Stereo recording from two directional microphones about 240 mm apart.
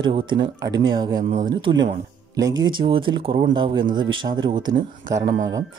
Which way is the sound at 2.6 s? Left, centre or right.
Right.